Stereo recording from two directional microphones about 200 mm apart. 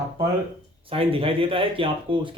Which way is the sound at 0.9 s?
25° right (ahead or behind).